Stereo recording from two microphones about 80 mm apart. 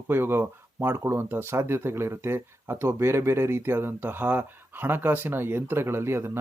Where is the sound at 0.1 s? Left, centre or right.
Right.